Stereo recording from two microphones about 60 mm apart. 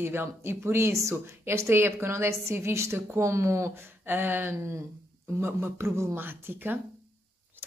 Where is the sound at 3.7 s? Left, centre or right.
Right.